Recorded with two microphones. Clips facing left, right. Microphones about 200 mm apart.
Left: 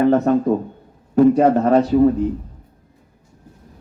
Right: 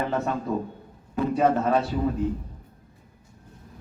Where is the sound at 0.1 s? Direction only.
50° left (ahead or behind).